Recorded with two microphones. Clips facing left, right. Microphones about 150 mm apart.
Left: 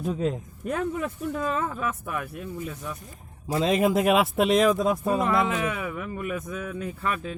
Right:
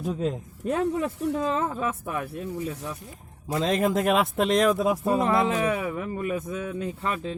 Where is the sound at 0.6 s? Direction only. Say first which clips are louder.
Right 3 dB; 35° right (ahead or behind).